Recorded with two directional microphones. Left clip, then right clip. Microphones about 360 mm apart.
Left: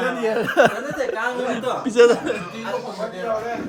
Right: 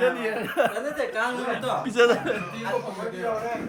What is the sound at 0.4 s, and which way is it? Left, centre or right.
Speech, centre.